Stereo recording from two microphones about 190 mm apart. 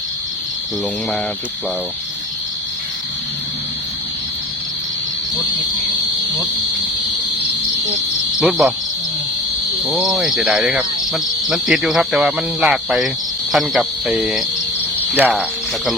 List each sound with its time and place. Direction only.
8.4 s speech: 5° right (ahead or behind)
9.8 s speech: centre (ahead or behind)
15.1 s cricket: 10° right (ahead or behind)